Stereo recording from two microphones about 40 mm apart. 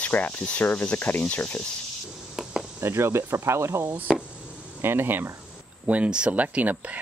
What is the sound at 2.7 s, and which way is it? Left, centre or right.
Speech, right.